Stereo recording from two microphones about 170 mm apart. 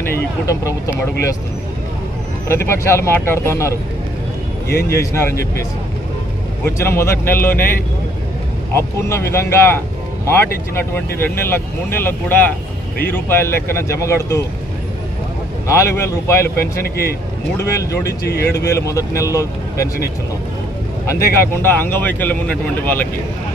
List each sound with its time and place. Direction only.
2.4 s speech: 15° left (ahead or behind)
4.7 s speech: 15° left (ahead or behind)
6.6 s speech: 15° left (ahead or behind)
8.7 s speech: 15° left (ahead or behind)
15.6 s speech: 15° left (ahead or behind)
16.8 s a man's voice: 65° left (ahead or behind)
17.6 s speech: 20° left (ahead or behind)
21.1 s speech: 15° left (ahead or behind)